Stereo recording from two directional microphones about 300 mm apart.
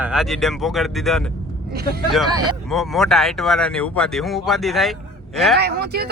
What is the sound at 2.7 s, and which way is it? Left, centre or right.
Speech, centre.